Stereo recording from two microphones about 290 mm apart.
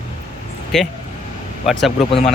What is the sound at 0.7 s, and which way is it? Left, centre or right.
Speech, centre.